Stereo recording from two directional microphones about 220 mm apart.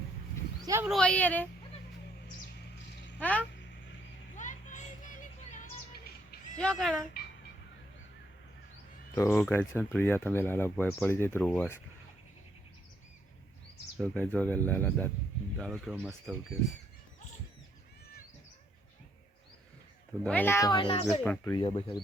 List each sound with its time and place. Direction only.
0.6 s a sound: 15° right (ahead or behind)
0.9 s speech: 5° left (ahead or behind)
3.2 s speech: 5° left (ahead or behind)
4.4 s vehicle: 35° left (ahead or behind)
6.6 s speech: centre (ahead or behind)
9.1 s speech: 10° left (ahead or behind)
14.0 s speech: 5° left (ahead or behind)
20.2 s speech: 10° left (ahead or behind); by 21.1 s 25° left (ahead or behind)
21.1 s speech: 10° left (ahead or behind)
21.6 s speech: 25° left (ahead or behind)